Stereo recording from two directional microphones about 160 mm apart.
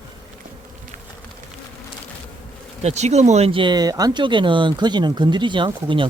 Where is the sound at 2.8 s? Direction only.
45° right (ahead or behind).